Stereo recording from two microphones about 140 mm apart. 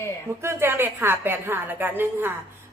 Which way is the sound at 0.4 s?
15° right (ahead or behind).